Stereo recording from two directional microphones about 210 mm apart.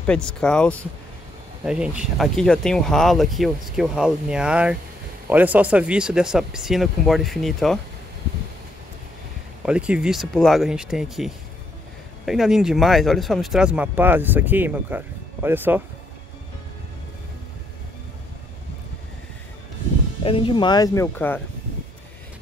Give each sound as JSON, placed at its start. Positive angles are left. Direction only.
{"t": 0.0, "sound": "speech", "side_deg": 5}
{"t": 9.7, "sound": "speech", "side_deg": -5}
{"t": 20.2, "sound": "speech", "side_deg": 25}